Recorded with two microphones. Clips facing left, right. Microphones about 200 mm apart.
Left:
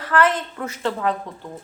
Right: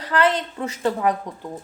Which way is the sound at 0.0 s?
15° right (ahead or behind).